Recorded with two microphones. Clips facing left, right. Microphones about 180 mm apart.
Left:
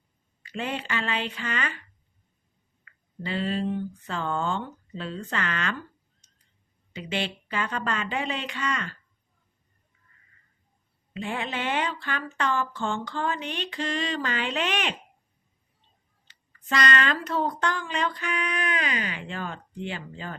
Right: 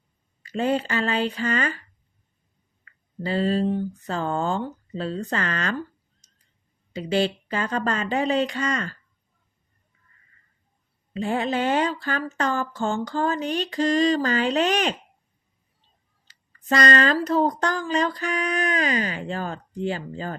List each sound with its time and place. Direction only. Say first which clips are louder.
0.4 s speech: right 8 dB; 40° right (ahead or behind)
2.8 s speech: right 6 dB; 40° right (ahead or behind)
6.2 s a sound: right 1 dB; 40° right (ahead or behind)
6.9 s speech: right 8 dB; 40° right (ahead or behind)
11.1 s speech: right 7 dB; 40° right (ahead or behind)
16.2 s speech: right 13 dB; 40° right (ahead or behind)